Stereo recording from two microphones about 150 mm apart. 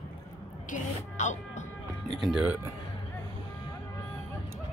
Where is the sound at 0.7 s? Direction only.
55° left (ahead or behind).